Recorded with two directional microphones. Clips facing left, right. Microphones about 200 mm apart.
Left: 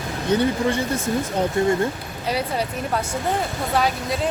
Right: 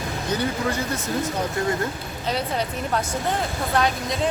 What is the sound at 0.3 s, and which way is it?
Speech, 30° left (ahead or behind).